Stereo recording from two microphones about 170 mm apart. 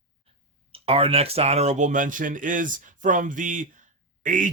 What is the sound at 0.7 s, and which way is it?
Speech, 35° right (ahead or behind).